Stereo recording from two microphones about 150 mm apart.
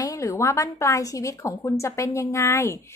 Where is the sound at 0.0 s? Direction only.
20° left (ahead or behind).